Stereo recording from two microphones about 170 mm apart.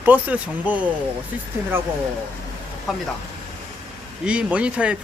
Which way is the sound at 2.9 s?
Centre (ahead or behind).